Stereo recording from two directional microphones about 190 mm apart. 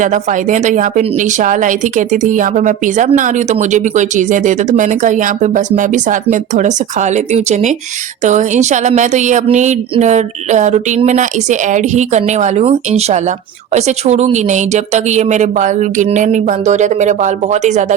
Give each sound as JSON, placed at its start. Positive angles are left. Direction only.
{"t": 0.0, "sound": "a woman's voice", "side_deg": -40}